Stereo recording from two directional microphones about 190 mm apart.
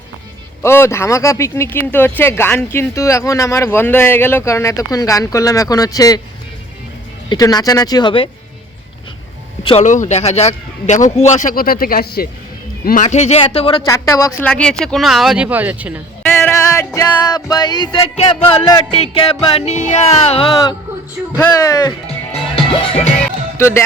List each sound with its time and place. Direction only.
0.6 s speech: 15° left (ahead or behind)
7.3 s speech: 20° left (ahead or behind)
9.6 s speech: 35° left (ahead or behind); by 14.3 s 15° left (ahead or behind)
14.4 s speech: 5° left (ahead or behind)
16.3 s music: 10° left (ahead or behind)
18.4 s speech: 20° left (ahead or behind)
18.9 s speech: 30° left (ahead or behind)
21.3 s speech: 15° left (ahead or behind)
22.0 s music: 30° left (ahead or behind)
23.6 s speech: 15° left (ahead or behind)